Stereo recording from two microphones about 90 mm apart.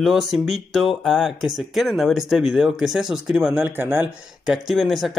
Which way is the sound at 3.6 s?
25° right (ahead or behind).